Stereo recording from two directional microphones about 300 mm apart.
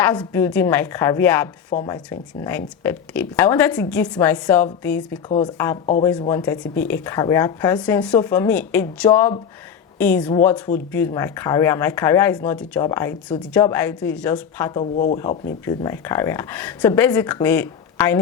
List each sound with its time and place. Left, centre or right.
0.0 s speech: centre
5.8 s speech: left
6.1 s speech: centre